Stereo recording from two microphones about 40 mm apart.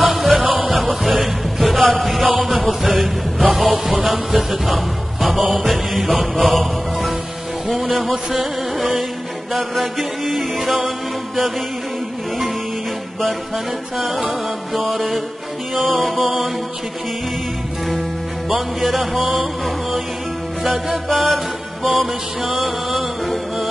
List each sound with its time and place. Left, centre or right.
0.1 s music: centre
0.4 s music: centre
0.7 s music: centre
3.5 s music: centre
13.9 s music: centre
18.5 s music: centre